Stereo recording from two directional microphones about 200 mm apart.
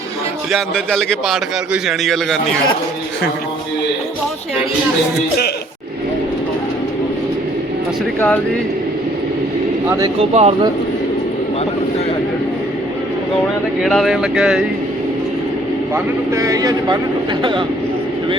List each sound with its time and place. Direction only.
0.5 s a man's voice: centre (ahead or behind)
10.3 s speech: 30° right (ahead or behind)
13.8 s a man's voice: centre (ahead or behind)
16.3 s a man's voice: 15° right (ahead or behind)